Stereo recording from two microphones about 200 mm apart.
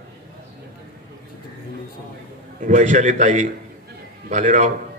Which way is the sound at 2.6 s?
40° right (ahead or behind).